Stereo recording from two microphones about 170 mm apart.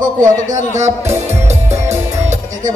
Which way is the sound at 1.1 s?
15° right (ahead or behind).